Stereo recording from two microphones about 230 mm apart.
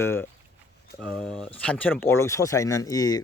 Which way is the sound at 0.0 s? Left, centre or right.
Centre.